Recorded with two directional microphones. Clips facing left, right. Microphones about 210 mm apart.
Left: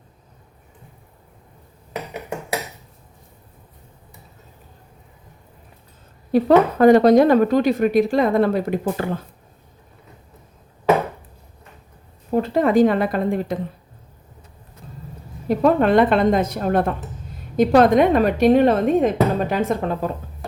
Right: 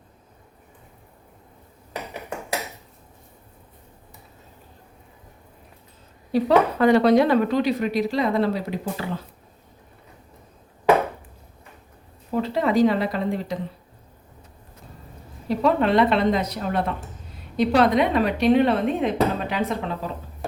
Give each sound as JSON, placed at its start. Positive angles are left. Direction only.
{"t": 6.3, "sound": "speech", "side_deg": 45}
{"t": 12.3, "sound": "speech", "side_deg": 50}
{"t": 15.4, "sound": "speech", "side_deg": 50}